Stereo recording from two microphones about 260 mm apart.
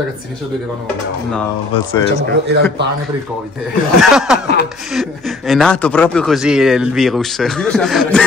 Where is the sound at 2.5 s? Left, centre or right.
Right.